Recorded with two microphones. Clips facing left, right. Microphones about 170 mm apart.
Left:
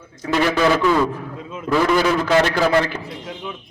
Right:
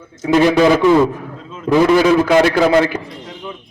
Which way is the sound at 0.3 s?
15° right (ahead or behind).